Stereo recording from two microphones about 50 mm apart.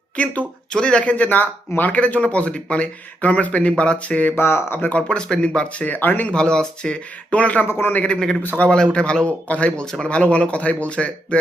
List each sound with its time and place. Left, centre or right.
0.2 s speech: left
1.1 s speech: left
4.4 s speech: left
5.0 s speech: centre
5.8 s speech: left
6.2 s speech: centre
7.3 s speech: left
8.7 s speech: centre
9.8 s speech: centre
10.1 s speech: left